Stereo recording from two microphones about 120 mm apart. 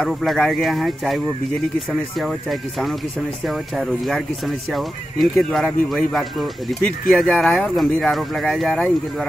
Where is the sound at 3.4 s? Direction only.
Centre (ahead or behind).